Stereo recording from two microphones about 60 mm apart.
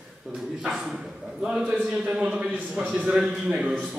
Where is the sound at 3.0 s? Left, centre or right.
Centre.